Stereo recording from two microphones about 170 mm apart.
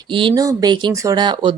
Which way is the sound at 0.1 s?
30° right (ahead or behind).